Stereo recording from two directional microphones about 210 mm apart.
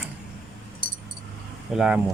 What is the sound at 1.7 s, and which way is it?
Speech, 5° right (ahead or behind).